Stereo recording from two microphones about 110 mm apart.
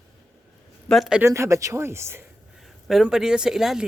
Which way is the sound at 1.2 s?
25° right (ahead or behind).